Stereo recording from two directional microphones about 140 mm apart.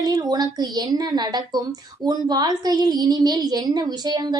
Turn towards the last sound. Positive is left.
turn(degrees=-30)  # may be behind; listen again after turning